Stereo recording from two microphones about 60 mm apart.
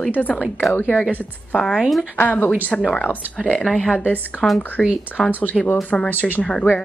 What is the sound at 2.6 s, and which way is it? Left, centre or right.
A woman's voice, left.